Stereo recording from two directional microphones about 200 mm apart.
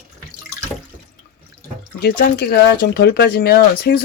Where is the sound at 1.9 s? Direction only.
55° left (ahead or behind).